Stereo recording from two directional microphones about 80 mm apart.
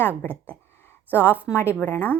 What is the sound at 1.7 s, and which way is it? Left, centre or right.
Speech, left.